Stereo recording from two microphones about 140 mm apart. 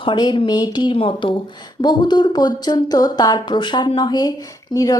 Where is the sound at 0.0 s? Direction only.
35° left (ahead or behind).